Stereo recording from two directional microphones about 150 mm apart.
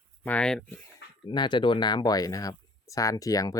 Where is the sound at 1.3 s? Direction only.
30° left (ahead or behind).